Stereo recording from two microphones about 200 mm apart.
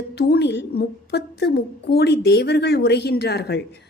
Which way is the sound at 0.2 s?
55° left (ahead or behind).